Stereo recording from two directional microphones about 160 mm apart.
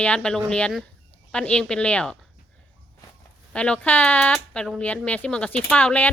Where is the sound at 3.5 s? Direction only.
5° left (ahead or behind).